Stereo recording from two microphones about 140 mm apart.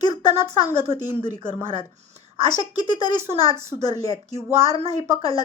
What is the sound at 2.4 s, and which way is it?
Speech, 30° left (ahead or behind).